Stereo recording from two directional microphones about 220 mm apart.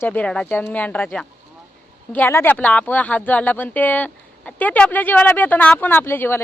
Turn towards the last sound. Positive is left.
turn(degrees=10)  # may be behind; listen again after turning